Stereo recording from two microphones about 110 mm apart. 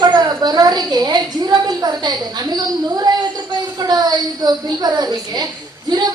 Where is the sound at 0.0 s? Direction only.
40° right (ahead or behind).